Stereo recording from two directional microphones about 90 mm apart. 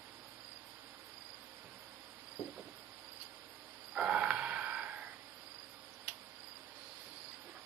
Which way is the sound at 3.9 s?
15° right (ahead or behind).